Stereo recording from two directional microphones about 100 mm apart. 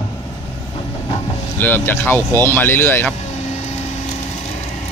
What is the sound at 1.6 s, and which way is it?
Speech, 20° left (ahead or behind).